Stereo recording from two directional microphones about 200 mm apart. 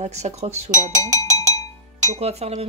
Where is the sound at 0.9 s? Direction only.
15° right (ahead or behind).